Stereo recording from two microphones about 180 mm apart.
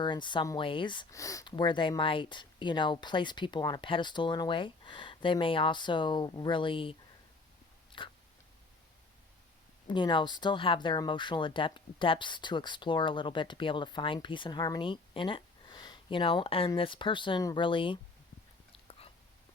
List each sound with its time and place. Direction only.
0.0 s speech: 25° left (ahead or behind)
7.9 s a sound: 25° left (ahead or behind)
9.8 s speech: 25° left (ahead or behind)
18.7 s biting: 30° left (ahead or behind)